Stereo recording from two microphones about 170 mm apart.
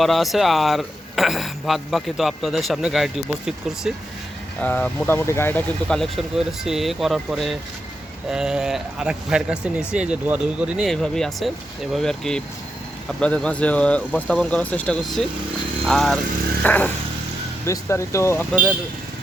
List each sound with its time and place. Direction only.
0.0 s speech: centre (ahead or behind)
4.6 s speech: 10° left (ahead or behind)